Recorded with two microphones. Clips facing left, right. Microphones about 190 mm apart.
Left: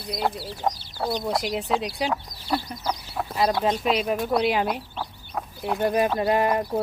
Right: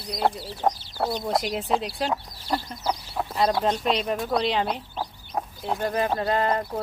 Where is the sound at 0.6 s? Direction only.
55° right (ahead or behind).